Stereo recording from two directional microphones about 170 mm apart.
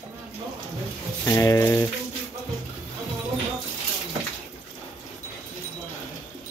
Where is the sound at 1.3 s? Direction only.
20° left (ahead or behind).